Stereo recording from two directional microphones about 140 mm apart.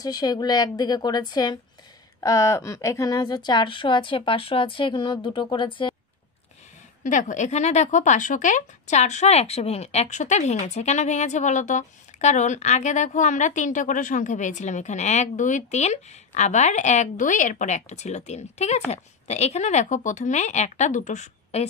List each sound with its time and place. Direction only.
0.0 s a woman's voice: 30° left (ahead or behind)
7.0 s speech: 65° left (ahead or behind)